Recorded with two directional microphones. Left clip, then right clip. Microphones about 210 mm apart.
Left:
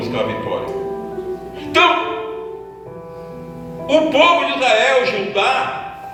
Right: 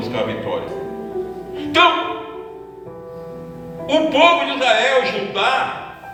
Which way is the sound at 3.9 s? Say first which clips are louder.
Left 1 dB; 10° right (ahead or behind).